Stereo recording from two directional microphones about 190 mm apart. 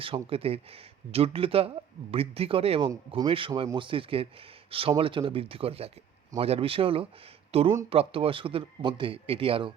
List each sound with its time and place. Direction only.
0.0 s speech: 30° right (ahead or behind)